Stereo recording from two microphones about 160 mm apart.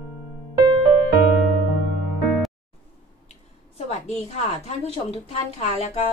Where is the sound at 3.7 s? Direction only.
40° left (ahead or behind).